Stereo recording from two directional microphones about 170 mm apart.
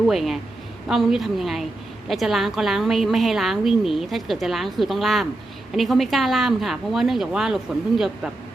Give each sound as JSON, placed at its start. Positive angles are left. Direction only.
{"t": 0.1, "sound": "a woman's voice", "side_deg": 0}